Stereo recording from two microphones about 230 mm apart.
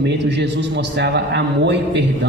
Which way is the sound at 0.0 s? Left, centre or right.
Right.